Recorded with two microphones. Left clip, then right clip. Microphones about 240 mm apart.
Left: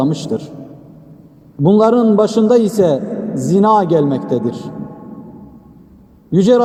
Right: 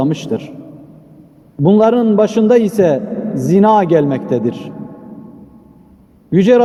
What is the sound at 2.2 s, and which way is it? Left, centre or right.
Speech, right.